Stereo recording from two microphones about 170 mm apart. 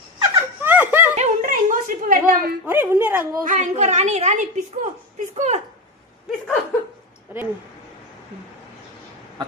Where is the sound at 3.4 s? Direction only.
45° right (ahead or behind).